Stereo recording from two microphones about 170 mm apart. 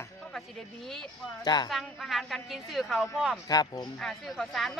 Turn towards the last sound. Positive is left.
turn(degrees=0)  # may be behind; listen again after turning